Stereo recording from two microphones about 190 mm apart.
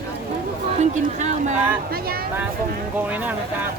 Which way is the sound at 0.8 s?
40° right (ahead or behind).